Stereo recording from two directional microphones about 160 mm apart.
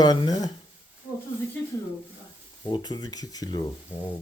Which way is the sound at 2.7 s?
25° left (ahead or behind).